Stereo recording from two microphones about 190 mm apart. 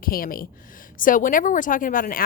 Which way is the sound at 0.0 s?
50° left (ahead or behind).